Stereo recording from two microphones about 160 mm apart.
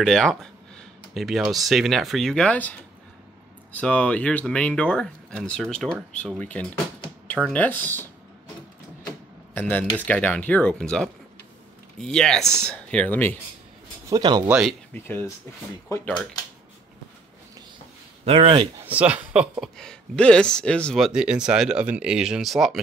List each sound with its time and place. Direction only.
0.0 s speech: centre (ahead or behind)
3.7 s speech: 5° left (ahead or behind)
9.6 s speech: 10° left (ahead or behind)
14.0 s speech: 25° right (ahead or behind)
14.6 s speech: centre (ahead or behind)
15.0 s speech: 15° left (ahead or behind)
18.2 s speech: 40° right (ahead or behind)
18.8 s speech: 10° right (ahead or behind)
19.6 s speech: 5° left (ahead or behind)